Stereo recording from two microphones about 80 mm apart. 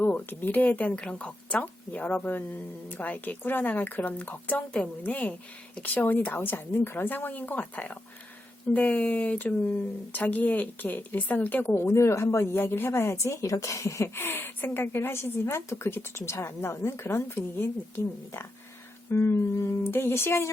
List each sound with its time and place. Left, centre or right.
0.0 s speech: left